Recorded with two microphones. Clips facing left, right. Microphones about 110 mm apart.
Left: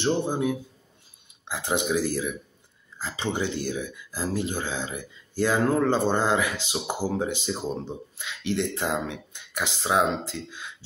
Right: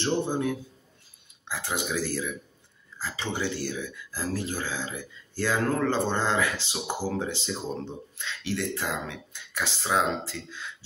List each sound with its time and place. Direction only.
0.0 s speech: 15° left (ahead or behind)